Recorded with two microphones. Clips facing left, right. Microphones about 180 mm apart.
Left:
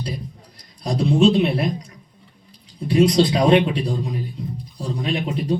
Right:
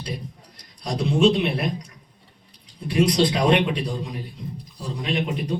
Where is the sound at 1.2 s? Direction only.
30° left (ahead or behind).